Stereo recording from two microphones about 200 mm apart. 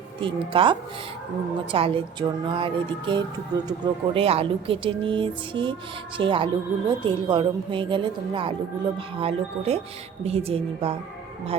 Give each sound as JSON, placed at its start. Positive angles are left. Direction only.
{"t": 0.2, "sound": "speech", "side_deg": -25}